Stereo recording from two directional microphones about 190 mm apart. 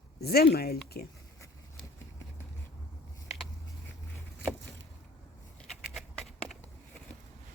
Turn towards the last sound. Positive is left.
turn(degrees=0)  # may be behind; listen again after turning